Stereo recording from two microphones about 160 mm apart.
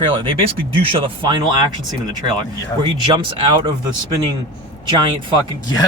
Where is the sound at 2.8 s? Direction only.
30° right (ahead or behind).